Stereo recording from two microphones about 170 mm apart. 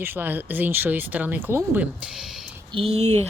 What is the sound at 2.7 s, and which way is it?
Speech, 35° right (ahead or behind).